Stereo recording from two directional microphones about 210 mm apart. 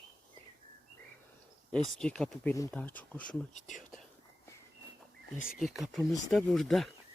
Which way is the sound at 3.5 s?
35° left (ahead or behind).